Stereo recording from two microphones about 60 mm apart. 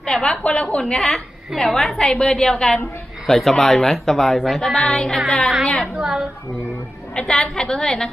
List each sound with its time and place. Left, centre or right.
0.0 s a woman's voice: centre
0.8 s a woman's voice: centre
6.0 s a woman's voice: centre
7.2 s a woman's voice: centre